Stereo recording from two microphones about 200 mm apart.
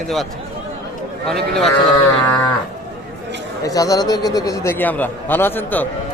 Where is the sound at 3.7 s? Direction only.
20° left (ahead or behind).